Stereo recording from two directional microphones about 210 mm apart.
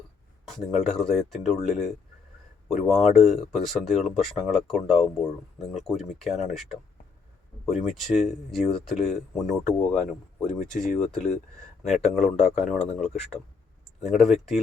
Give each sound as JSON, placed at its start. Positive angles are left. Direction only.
{"t": 0.4, "sound": "speech", "side_deg": 0}
{"t": 14.0, "sound": "speech", "side_deg": 0}